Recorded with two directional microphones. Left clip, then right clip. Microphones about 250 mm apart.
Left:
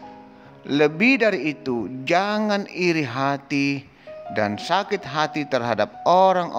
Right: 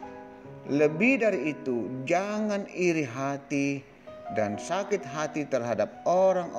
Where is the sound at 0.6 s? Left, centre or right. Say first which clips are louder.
Left 5 dB; centre.